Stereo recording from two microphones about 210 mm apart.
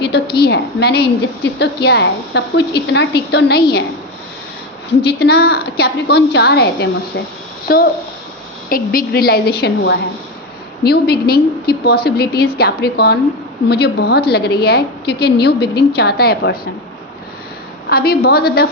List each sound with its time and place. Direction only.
0.0 s a woman's voice: 50° left (ahead or behind)
4.9 s a woman's voice: 50° left (ahead or behind)
17.8 s a woman's voice: 50° left (ahead or behind)